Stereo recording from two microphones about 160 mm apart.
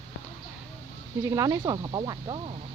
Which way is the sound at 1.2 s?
20° right (ahead or behind).